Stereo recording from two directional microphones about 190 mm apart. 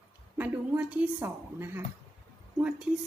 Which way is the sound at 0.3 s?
10° right (ahead or behind).